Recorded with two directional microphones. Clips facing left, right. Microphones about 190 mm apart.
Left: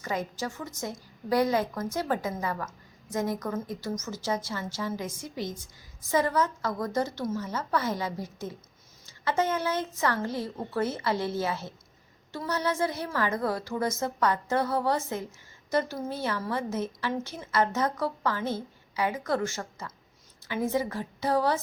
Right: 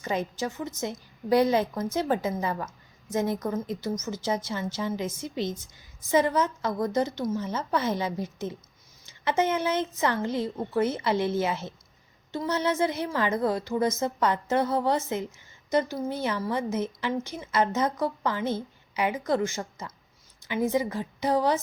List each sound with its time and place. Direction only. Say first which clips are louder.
0.0 s a woman's voice: right 3 dB; 20° right (ahead or behind)